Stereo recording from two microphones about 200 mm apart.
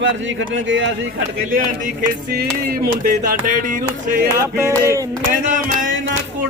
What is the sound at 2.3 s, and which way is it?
Music, 50° right (ahead or behind).